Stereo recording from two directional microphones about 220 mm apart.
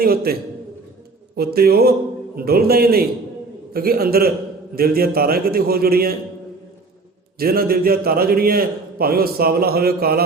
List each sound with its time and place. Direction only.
0.0 s a man's voice: 45° right (ahead or behind)
1.4 s a man's voice: 45° right (ahead or behind)
7.3 s a man's voice: 45° right (ahead or behind)